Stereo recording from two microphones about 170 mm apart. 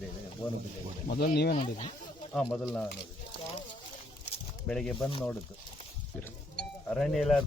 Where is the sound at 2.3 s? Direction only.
5° left (ahead or behind).